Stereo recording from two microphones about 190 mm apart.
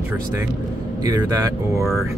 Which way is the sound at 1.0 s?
20° right (ahead or behind).